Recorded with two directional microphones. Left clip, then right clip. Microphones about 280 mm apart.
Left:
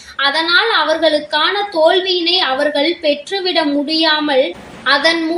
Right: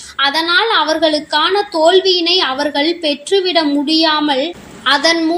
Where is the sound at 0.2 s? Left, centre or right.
Right.